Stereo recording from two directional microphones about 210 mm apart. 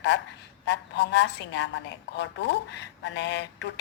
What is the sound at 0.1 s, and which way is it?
A woman's voice, 55° left (ahead or behind).